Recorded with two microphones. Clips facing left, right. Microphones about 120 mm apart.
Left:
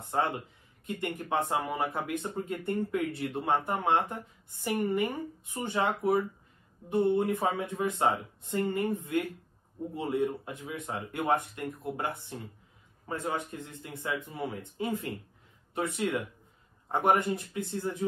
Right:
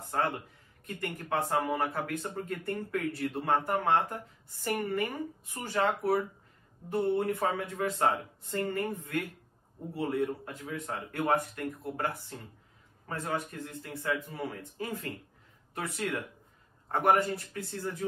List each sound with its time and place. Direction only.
0.1 s a man's voice: 20° left (ahead or behind)